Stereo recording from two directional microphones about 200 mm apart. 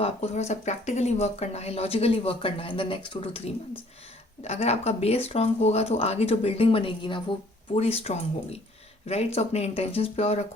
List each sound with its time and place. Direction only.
0.0 s speech: 35° left (ahead or behind)